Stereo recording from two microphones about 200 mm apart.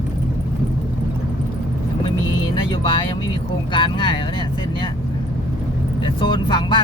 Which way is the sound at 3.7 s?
25° left (ahead or behind).